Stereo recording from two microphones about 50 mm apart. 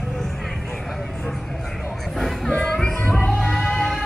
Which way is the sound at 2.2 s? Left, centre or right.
Centre.